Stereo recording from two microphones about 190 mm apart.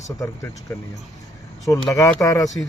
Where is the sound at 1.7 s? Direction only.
15° left (ahead or behind).